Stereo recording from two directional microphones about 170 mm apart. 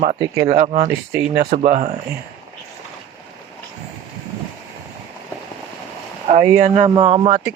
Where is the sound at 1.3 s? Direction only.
60° right (ahead or behind).